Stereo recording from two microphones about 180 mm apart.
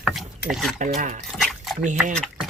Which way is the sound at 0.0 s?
5° right (ahead or behind).